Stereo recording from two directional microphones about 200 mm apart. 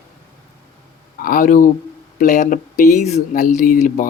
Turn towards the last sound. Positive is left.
turn(degrees=40)  # may be behind; listen again after turning